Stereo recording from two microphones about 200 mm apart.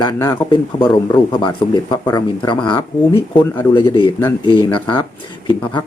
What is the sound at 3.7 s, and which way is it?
Speech, 25° left (ahead or behind).